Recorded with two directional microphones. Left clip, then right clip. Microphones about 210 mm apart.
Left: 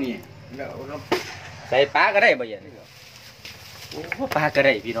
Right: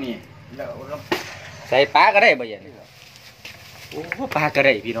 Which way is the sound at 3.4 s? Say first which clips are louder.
Right 2 dB; 10° right (ahead or behind).